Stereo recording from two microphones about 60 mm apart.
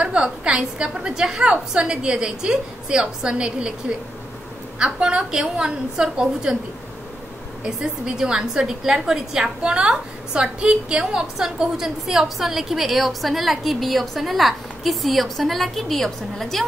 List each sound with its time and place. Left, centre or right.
0.0 s a woman's voice: centre
4.7 s a woman's voice: centre
7.6 s a woman's voice: centre